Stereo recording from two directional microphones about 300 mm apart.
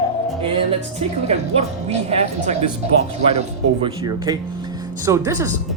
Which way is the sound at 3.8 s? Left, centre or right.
Centre.